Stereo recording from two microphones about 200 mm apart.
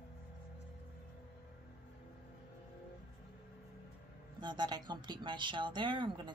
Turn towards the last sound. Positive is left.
turn(degrees=-25)  # may be behind; listen again after turning